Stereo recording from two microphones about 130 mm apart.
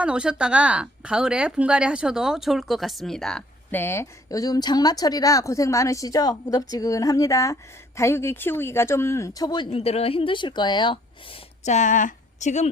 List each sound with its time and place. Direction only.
0.0 s speech: 5° right (ahead or behind); by 9.6 s 30° left (ahead or behind)
9.7 s speech: 50° left (ahead or behind)
11.6 s speech: 65° left (ahead or behind)